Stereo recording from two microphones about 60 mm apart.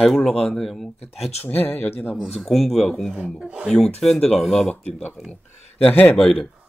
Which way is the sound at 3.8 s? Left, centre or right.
Centre.